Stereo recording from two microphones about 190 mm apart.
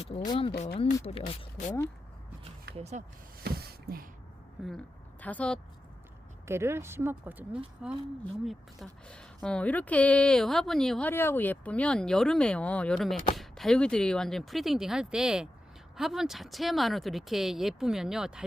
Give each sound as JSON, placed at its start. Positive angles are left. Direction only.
{"t": 0.3, "sound": "speech", "side_deg": 30}
{"t": 2.7, "sound": "speech", "side_deg": -35}
{"t": 3.4, "sound": "a sound", "side_deg": -55}
{"t": 4.6, "sound": "a woman's voice", "side_deg": 0}
{"t": 6.5, "sound": "a woman's voice", "side_deg": -15}